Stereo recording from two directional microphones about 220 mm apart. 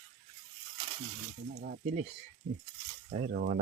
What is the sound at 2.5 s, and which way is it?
Speech, 40° right (ahead or behind).